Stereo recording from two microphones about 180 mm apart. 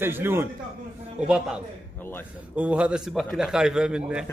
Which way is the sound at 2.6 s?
5° right (ahead or behind).